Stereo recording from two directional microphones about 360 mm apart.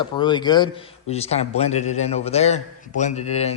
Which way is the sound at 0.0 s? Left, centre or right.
Centre.